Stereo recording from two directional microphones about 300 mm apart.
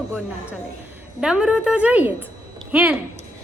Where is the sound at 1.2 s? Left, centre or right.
Centre.